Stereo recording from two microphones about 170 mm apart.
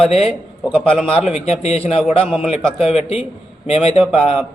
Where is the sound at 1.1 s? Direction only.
40° left (ahead or behind).